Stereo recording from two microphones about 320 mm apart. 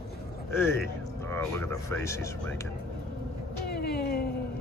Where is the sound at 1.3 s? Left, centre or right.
Centre.